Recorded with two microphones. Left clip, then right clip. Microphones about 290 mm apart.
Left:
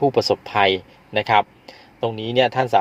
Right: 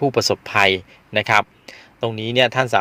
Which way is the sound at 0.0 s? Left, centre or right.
Right.